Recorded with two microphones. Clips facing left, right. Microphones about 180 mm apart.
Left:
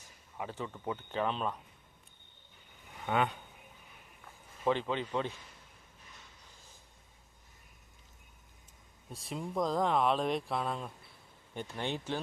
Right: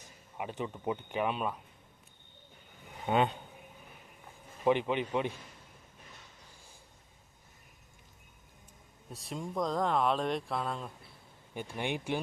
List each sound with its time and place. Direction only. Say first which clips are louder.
0.3 s speech: right 2 dB; 15° right (ahead or behind)
3.1 s speech: right 3 dB; 25° right (ahead or behind)
4.6 s speech: right 3 dB; 15° right (ahead or behind)
9.1 s speech: even; centre (ahead or behind)
11.5 s speech: right 1 dB; 10° right (ahead or behind)